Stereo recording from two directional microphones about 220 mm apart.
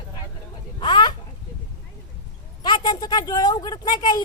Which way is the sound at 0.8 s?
20° left (ahead or behind).